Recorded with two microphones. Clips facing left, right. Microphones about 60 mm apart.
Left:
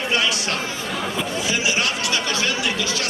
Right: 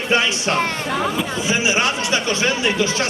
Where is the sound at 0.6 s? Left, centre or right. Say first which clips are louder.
Right 6 dB; right.